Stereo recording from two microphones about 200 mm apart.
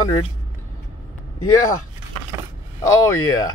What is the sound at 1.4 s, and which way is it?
Speech, 15° left (ahead or behind).